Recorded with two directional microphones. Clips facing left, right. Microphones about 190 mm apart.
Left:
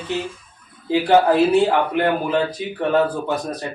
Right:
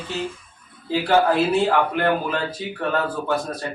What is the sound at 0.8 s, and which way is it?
Speech, 15° left (ahead or behind).